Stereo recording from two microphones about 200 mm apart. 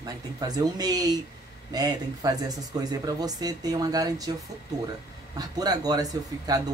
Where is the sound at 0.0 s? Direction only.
20° right (ahead or behind).